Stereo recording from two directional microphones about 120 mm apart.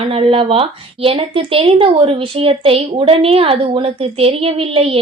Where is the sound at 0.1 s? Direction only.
50° right (ahead or behind).